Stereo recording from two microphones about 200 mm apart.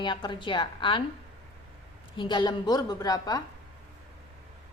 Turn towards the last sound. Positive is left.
turn(degrees=20)  # may be behind; listen again after turning